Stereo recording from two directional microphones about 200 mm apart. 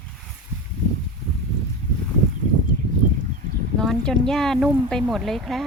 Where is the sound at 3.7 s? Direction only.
5° left (ahead or behind).